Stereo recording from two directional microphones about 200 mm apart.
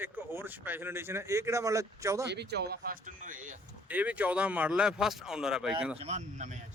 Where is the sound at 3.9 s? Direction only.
5° right (ahead or behind).